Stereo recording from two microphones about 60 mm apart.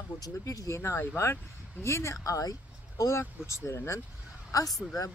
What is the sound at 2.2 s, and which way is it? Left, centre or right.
Speech, left.